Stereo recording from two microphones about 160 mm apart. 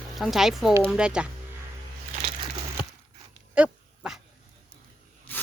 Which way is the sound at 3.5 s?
5° right (ahead or behind).